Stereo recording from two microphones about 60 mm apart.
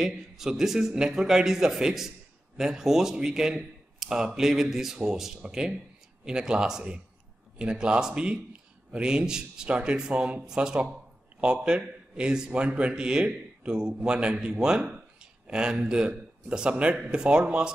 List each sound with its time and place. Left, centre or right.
0.0 s a man's voice: centre